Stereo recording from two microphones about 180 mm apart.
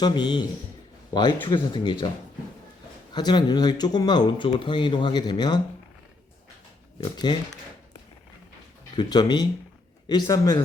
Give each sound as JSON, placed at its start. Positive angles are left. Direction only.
{"t": 0.0, "sound": "speech", "side_deg": 25}
{"t": 3.1, "sound": "speech", "side_deg": 25}
{"t": 7.0, "sound": "speech", "side_deg": 25}
{"t": 9.0, "sound": "speech", "side_deg": 25}